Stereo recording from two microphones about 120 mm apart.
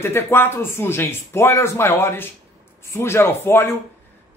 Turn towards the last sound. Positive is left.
turn(degrees=20)  # may be behind; listen again after turning